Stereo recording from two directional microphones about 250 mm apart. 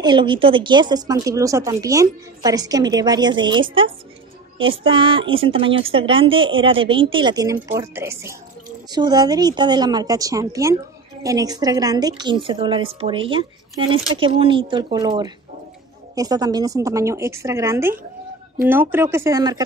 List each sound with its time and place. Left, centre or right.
0.0 s a woman's voice: centre